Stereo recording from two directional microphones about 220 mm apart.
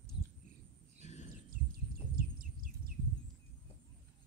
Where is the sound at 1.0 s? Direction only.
30° left (ahead or behind).